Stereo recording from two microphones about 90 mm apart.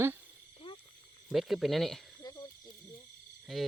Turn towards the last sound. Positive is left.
turn(degrees=0)  # may be behind; listen again after turning